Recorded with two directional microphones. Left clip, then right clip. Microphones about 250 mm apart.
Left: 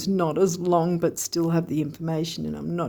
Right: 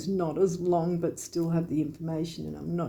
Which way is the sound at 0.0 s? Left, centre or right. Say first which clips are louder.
Left 4 dB; left.